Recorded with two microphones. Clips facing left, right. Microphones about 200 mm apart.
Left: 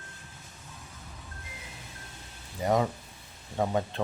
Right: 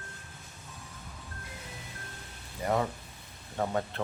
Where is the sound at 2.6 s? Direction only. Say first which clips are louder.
Left 3 dB; 15° left (ahead or behind).